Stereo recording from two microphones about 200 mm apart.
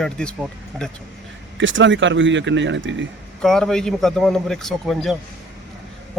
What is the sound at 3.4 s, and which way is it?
A man's voice, centre (ahead or behind).